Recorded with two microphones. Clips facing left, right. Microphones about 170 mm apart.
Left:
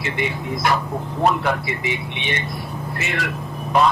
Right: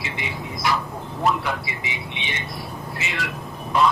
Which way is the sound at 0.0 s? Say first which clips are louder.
Left 6 dB; 55° left (ahead or behind).